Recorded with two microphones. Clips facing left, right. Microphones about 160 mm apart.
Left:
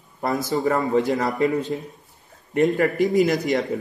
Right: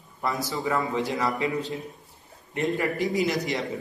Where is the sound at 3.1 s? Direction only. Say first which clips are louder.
Left 6 dB; 50° left (ahead or behind).